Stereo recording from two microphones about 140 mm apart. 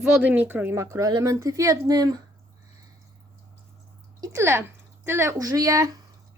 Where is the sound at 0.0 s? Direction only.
10° right (ahead or behind); by 2.2 s 25° right (ahead or behind).